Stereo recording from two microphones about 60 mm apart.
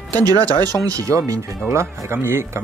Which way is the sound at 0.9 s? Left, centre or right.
Right.